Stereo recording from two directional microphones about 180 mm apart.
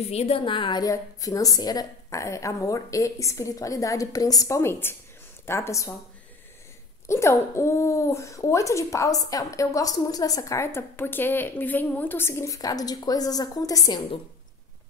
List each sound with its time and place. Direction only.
0.1 s a woman's voice: 35° left (ahead or behind); by 5.9 s 15° left (ahead or behind)
7.1 s speech: 15° left (ahead or behind)